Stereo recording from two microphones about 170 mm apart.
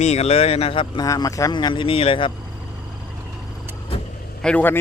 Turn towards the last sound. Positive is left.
turn(degrees=10)  # may be behind; listen again after turning